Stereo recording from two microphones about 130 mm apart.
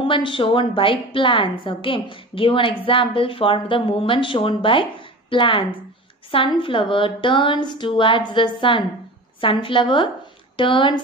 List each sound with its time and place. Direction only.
0.0 s a woman's voice: 40° left (ahead or behind)